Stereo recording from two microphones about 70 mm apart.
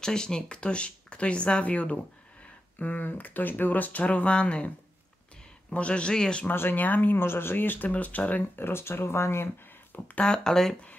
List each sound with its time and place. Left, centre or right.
0.0 s speech: centre
6.4 s speech: left
8.5 s speech: left
9.9 s speech: left
10.2 s speech: centre